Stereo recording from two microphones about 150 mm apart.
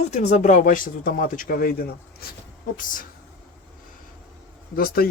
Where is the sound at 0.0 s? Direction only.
50° left (ahead or behind); by 1.9 s 80° left.